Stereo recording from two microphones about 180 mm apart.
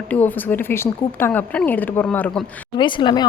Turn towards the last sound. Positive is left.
turn(degrees=25)  # may be behind; listen again after turning